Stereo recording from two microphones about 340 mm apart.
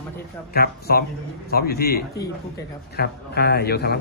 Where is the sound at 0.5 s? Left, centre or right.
Left.